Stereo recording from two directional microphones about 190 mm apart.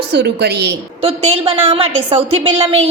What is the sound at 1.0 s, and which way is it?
A woman's voice, 30° right (ahead or behind).